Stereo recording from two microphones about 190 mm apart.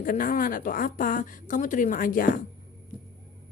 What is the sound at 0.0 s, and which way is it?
A woman's voice, 45° left (ahead or behind).